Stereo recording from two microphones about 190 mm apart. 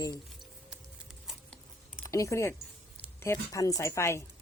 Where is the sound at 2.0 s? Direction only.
15° left (ahead or behind).